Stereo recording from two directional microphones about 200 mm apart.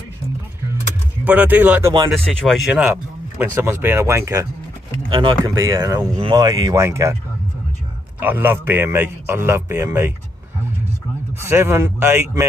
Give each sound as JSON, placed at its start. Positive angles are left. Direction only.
{"t": 1.2, "sound": "speech", "side_deg": -10}
{"t": 2.0, "sound": "speech", "side_deg": 0}
{"t": 8.2, "sound": "speech", "side_deg": -10}
{"t": 11.3, "sound": "speech", "side_deg": -10}